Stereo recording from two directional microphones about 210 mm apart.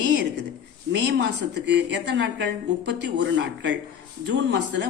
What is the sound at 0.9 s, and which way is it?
A woman's voice, 55° right (ahead or behind).